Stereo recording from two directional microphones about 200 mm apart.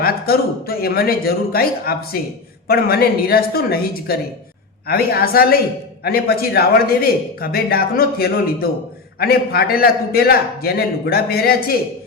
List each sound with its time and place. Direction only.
0.0 s a man's voice: 50° left (ahead or behind)